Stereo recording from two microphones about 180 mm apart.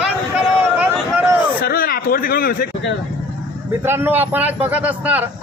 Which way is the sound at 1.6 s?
55° left (ahead or behind).